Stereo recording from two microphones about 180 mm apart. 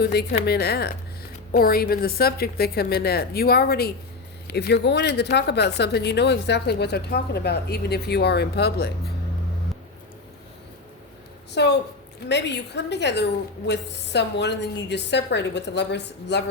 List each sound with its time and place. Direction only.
0.0 s speech: 65° left (ahead or behind)
11.5 s a woman's voice: 70° left (ahead or behind)